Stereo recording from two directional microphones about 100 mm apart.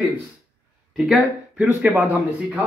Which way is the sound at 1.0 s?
Centre (ahead or behind).